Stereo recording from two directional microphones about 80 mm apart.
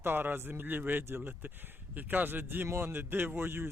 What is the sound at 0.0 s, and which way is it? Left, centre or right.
Speech, right.